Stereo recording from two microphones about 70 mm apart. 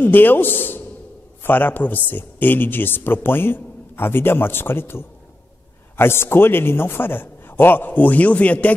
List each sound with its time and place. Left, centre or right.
0.0 s a man's voice: left